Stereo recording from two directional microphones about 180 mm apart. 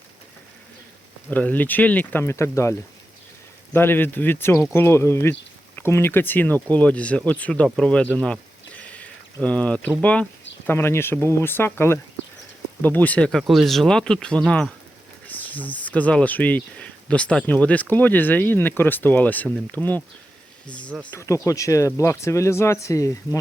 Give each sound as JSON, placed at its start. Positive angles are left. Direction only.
{"t": 1.3, "sound": "speech", "side_deg": 10}